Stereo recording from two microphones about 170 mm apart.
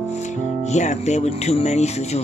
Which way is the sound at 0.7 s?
40° left (ahead or behind).